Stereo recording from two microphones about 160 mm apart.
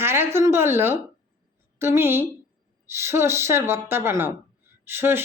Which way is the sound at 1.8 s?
15° right (ahead or behind).